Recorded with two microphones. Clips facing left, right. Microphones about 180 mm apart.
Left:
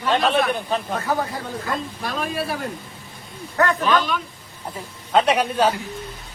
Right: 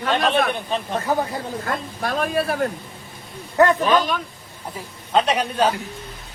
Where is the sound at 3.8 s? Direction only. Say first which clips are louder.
Right 2 dB; 40° right (ahead or behind).